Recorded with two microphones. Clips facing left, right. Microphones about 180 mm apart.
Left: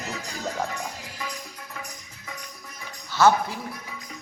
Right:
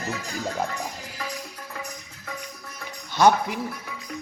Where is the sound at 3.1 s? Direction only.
15° right (ahead or behind).